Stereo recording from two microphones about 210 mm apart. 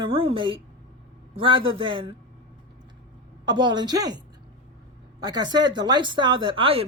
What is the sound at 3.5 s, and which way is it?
Speech, 20° right (ahead or behind).